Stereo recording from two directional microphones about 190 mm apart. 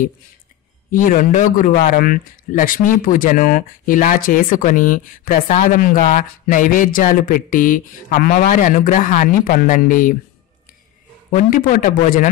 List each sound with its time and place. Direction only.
0.9 s a man's voice: 45° left (ahead or behind)
11.3 s a man's voice: 45° left (ahead or behind)